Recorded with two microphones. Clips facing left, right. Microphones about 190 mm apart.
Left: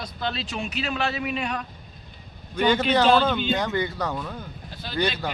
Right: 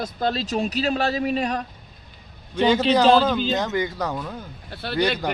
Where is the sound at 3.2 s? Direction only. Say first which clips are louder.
Right 2 dB; 5° right (ahead or behind).